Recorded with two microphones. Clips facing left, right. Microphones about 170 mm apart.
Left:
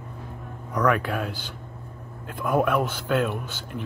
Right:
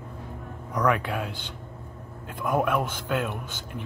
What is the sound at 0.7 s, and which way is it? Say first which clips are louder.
Speech: left 2 dB; 15° right (ahead or behind).